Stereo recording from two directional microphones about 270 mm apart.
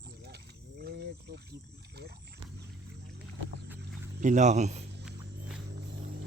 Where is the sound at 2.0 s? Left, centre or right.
Right.